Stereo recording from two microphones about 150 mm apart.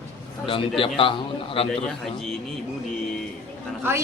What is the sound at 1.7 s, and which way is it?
Speech, 5° left (ahead or behind).